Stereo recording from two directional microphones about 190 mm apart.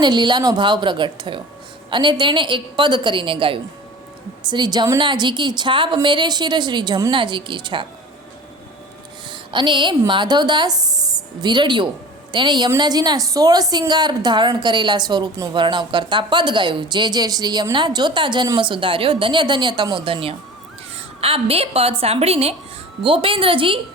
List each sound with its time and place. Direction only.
0.0 s a woman's voice: 25° right (ahead or behind)
9.3 s music: 25° right (ahead or behind)
10.1 s a woman's voice: 25° right (ahead or behind)